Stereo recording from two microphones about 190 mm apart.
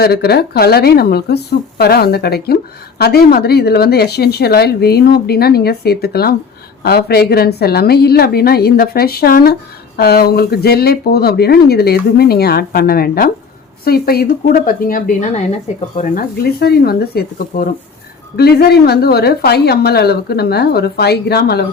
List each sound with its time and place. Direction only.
0.0 s speech: 55° left (ahead or behind)